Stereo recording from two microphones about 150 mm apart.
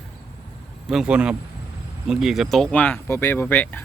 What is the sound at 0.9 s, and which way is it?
Speech, 5° right (ahead or behind).